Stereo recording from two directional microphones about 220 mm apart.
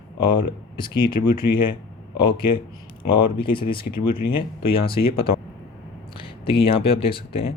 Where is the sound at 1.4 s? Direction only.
50° left (ahead or behind).